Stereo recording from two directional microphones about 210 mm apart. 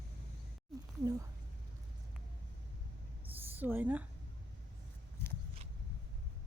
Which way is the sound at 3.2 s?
10° right (ahead or behind).